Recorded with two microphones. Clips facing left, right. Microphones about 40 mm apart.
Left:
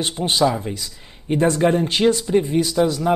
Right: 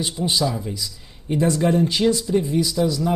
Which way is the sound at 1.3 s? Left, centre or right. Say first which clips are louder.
Left 2 dB; left.